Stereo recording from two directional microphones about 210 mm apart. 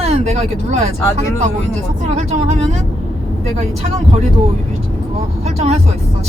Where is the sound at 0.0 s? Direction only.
30° right (ahead or behind).